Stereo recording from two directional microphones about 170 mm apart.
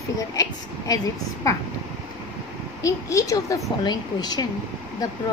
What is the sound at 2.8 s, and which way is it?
Speech, 20° left (ahead or behind).